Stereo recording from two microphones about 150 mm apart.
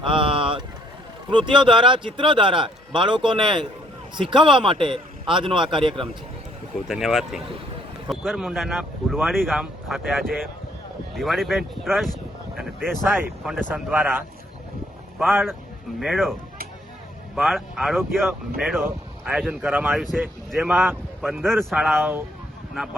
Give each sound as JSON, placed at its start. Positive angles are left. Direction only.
{"t": 0.0, "sound": "vehicle", "side_deg": -35}
{"t": 1.3, "sound": "a man's voice", "side_deg": -35}
{"t": 6.8, "sound": "speech", "side_deg": -5}
{"t": 12.5, "sound": "a sound", "side_deg": 0}
{"t": 13.1, "sound": "speech", "side_deg": -15}
{"t": 15.2, "sound": "speech", "side_deg": 0}
{"t": 17.3, "sound": "speech", "side_deg": 0}
{"t": 18.8, "sound": "speech", "side_deg": -10}